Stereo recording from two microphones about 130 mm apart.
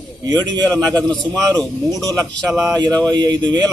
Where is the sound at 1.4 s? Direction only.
30° right (ahead or behind).